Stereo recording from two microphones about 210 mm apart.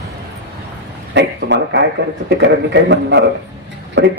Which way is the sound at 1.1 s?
55° right (ahead or behind).